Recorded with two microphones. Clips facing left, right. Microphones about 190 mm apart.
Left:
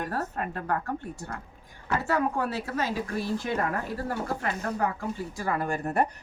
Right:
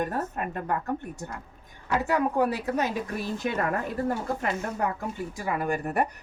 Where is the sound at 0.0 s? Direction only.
15° right (ahead or behind).